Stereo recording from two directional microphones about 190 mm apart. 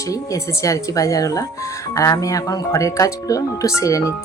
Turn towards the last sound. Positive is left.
turn(degrees=15)  # may be behind; listen again after turning